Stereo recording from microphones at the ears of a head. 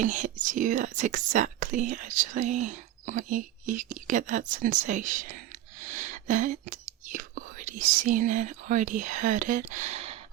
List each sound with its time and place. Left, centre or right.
0.0 s speech: right